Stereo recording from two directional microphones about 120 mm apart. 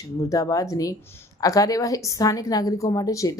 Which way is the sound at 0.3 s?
30° left (ahead or behind).